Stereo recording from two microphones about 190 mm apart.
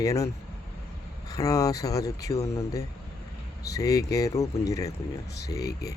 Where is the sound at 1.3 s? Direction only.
20° left (ahead or behind).